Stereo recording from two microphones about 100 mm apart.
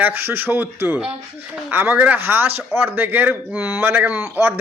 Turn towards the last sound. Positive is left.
turn(degrees=-20)  # may be behind; listen again after turning